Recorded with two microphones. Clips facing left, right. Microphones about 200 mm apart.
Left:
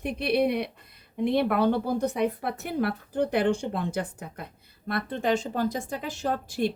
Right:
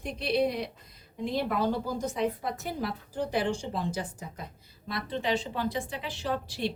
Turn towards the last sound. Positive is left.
turn(degrees=50)  # may be behind; listen again after turning